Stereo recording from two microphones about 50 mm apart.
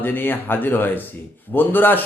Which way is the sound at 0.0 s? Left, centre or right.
Left.